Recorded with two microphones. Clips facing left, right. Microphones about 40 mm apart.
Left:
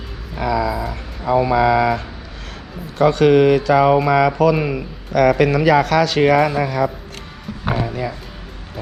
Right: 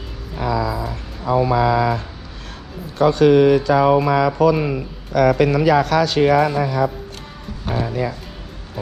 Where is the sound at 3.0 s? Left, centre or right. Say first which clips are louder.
Even; left.